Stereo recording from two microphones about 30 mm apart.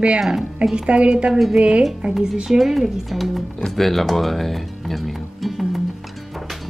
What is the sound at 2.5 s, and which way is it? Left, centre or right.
Speech, right.